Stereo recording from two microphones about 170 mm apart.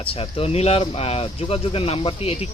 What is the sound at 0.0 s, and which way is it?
Speech, 35° left (ahead or behind).